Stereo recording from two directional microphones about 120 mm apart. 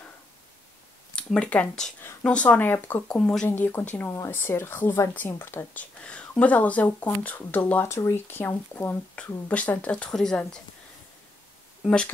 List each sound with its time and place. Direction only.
1.1 s speech: 10° left (ahead or behind)
3.2 s speech: 5° left (ahead or behind)
3.4 s speech: 15° left (ahead or behind)
11.8 s speech: 5° left (ahead or behind)